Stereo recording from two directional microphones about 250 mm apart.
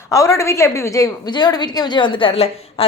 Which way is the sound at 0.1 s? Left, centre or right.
Centre.